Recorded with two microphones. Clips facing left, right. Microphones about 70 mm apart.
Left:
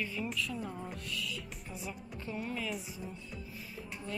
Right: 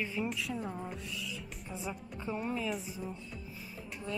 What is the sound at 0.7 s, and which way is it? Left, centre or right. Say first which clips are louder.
Speech: right 2 dB; centre.